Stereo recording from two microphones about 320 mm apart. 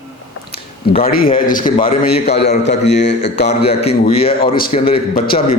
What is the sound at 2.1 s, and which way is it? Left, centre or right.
A man's voice, left.